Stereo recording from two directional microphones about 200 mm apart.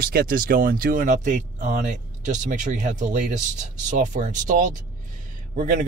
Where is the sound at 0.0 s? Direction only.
45° right (ahead or behind).